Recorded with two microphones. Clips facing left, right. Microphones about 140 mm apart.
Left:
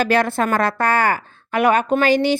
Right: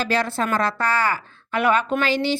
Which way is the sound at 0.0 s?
55° left (ahead or behind).